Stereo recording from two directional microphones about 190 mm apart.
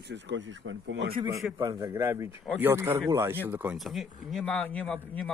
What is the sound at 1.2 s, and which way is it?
A man's voice, 15° right (ahead or behind).